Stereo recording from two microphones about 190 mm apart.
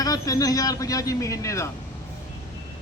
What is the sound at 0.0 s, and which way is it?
Speech, 20° left (ahead or behind).